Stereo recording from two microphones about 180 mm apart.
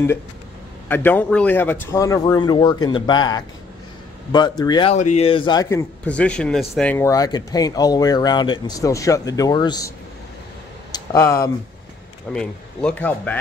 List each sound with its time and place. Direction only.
0.8 s a man's voice: 10° left (ahead or behind)
4.9 s speech: 40° left (ahead or behind); by 9.9 s 20° left (ahead or behind)
10.9 s a sound: 15° left (ahead or behind)
12.3 s a man's voice: 5° left (ahead or behind)